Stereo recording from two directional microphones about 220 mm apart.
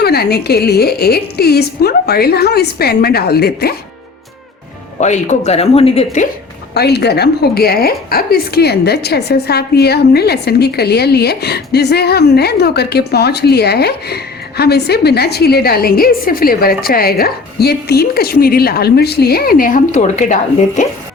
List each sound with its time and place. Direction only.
0.0 s a woman's voice: 45° left (ahead or behind)
4.9 s speech: 30° left (ahead or behind)
6.7 s a woman's voice: 45° left (ahead or behind)